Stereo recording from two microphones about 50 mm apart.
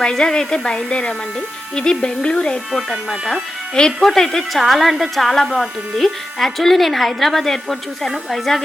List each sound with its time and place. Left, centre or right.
0.0 s speech: centre
2.7 s speech: centre